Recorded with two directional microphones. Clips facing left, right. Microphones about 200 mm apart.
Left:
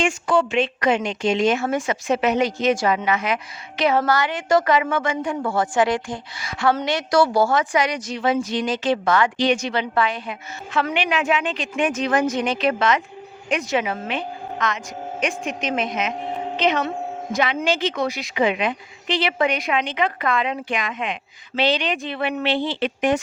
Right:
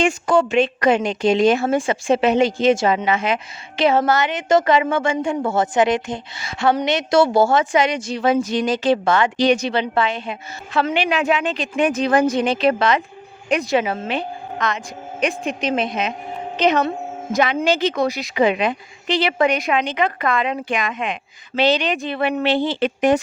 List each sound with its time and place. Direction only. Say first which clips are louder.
0.0 s a woman's voice: right 3 dB; 40° right (ahead or behind)
8.2 s speech: right 3 dB; 40° right (ahead or behind); by 9.3 s 25° right (ahead or behind)
9.4 s a woman's voice: right 3 dB; 35° right (ahead or behind)
10.9 s speech: right 2 dB; 35° right (ahead or behind)
16.6 s a woman's voice: right 4 dB; 40° right (ahead or behind)